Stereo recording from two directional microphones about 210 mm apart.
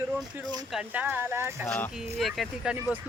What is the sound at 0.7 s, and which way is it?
Speech, 5° right (ahead or behind).